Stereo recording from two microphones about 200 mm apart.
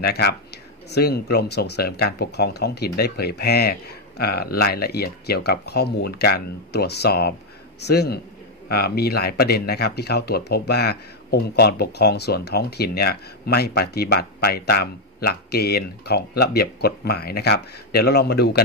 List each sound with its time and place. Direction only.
0.0 s speech: 55° left (ahead or behind)